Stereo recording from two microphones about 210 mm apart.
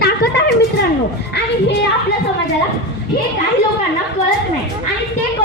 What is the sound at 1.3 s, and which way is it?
Speech, 55° left (ahead or behind).